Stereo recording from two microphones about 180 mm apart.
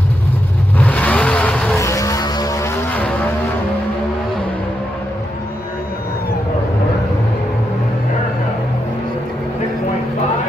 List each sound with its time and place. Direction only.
0.7 s vehicle: 10° left (ahead or behind)
1.8 s vehicle: 15° left (ahead or behind)